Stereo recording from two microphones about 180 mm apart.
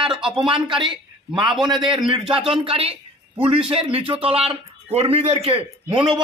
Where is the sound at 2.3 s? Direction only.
30° right (ahead or behind).